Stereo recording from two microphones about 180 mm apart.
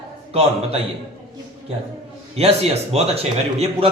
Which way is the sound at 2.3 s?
35° right (ahead or behind).